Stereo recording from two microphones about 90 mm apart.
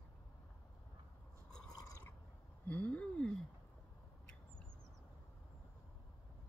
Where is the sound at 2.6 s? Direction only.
15° left (ahead or behind).